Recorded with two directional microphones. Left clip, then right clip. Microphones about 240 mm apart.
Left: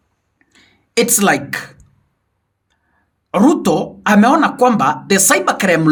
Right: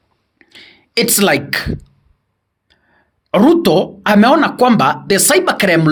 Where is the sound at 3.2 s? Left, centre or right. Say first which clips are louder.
Right 3 dB; right.